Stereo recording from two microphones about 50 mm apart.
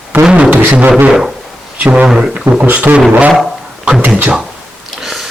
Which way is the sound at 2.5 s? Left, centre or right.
Right.